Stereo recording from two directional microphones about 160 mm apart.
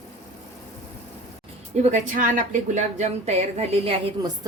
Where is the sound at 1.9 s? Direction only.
55° right (ahead or behind).